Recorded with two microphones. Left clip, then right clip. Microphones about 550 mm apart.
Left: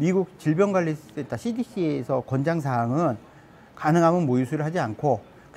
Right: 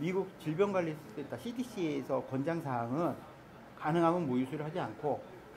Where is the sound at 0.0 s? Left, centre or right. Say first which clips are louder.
Left 11 dB; left.